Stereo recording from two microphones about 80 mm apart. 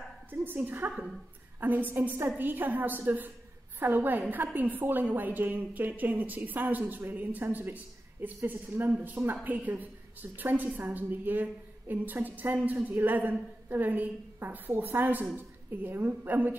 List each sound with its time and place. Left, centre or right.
0.3 s a woman's voice: right